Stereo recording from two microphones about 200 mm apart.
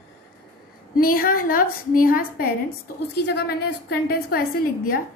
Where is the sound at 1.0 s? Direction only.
45° left (ahead or behind).